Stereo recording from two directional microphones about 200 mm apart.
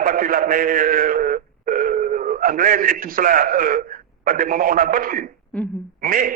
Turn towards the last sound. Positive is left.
turn(degrees=-45)  # may be behind; listen again after turning